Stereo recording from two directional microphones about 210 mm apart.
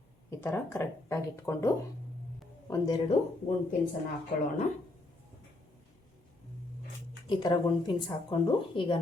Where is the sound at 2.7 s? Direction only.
15° left (ahead or behind).